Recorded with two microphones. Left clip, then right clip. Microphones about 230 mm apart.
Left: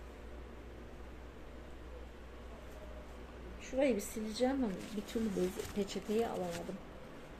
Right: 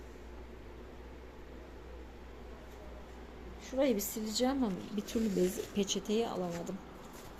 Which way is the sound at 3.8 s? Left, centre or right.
Right.